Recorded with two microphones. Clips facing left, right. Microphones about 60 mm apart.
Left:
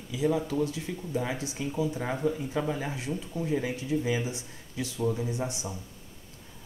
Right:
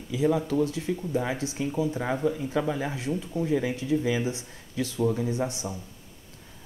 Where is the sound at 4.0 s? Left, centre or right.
Right.